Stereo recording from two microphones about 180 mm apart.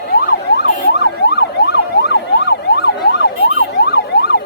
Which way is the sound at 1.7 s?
70° left (ahead or behind).